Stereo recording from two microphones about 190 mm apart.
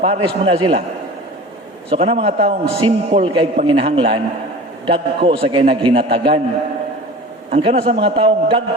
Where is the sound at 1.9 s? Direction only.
30° right (ahead or behind).